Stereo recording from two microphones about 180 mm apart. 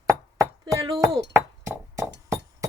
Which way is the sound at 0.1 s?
20° right (ahead or behind).